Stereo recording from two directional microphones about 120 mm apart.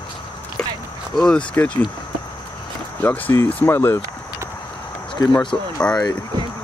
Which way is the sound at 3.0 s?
20° left (ahead or behind).